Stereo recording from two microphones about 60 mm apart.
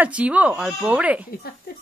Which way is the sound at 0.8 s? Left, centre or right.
Right.